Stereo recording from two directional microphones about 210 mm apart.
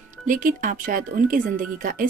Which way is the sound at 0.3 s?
40° right (ahead or behind).